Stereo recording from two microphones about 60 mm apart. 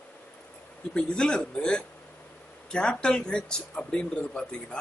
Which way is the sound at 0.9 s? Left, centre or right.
Centre.